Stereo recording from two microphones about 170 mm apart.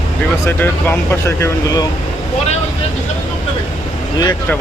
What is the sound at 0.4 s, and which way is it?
Speech, 10° left (ahead or behind).